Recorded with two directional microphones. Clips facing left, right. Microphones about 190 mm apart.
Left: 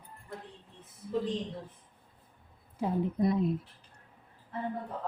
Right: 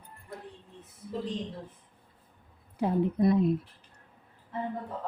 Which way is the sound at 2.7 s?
70° right (ahead or behind).